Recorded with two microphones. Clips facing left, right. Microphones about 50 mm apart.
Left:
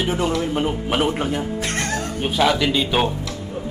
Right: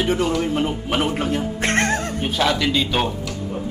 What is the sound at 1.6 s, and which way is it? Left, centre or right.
Music, right.